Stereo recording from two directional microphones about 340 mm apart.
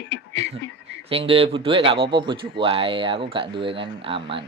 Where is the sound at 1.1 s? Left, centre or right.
Centre.